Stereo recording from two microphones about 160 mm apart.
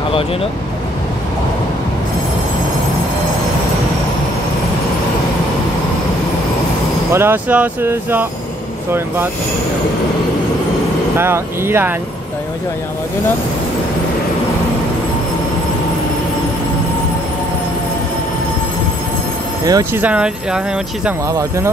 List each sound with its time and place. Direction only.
7.1 s speech: 15° right (ahead or behind)
11.1 s speech: 15° right (ahead or behind)
19.6 s speech: 20° right (ahead or behind)
20.0 s speech: 5° right (ahead or behind)
21.3 s speech: 20° right (ahead or behind)